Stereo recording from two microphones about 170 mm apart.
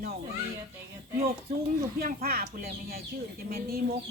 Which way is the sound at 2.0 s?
60° right (ahead or behind).